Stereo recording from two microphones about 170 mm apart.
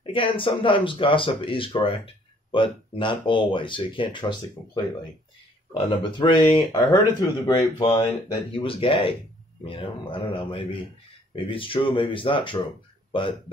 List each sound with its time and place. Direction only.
0.0 s speech: 30° left (ahead or behind)
5.7 s speech: 30° left (ahead or behind)